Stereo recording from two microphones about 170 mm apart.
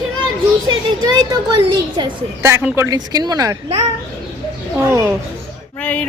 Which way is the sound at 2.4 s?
15° right (ahead or behind).